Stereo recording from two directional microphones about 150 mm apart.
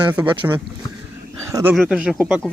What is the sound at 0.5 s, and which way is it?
Speech, 15° right (ahead or behind).